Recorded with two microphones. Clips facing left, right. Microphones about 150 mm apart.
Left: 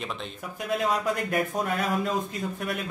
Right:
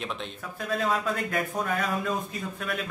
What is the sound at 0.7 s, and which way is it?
Speech, 15° left (ahead or behind).